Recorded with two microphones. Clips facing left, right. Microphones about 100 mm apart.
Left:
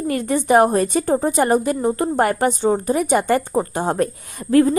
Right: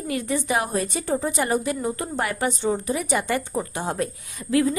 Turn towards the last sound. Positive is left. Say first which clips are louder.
# left 6 dB
turn(degrees=45)  # may be behind; listen again after turning